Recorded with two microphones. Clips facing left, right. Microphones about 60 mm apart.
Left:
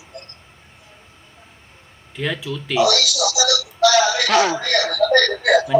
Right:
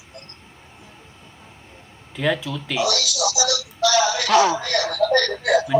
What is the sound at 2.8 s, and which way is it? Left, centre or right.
A woman's voice, left.